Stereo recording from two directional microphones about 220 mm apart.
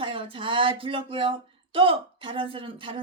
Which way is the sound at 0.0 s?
25° right (ahead or behind).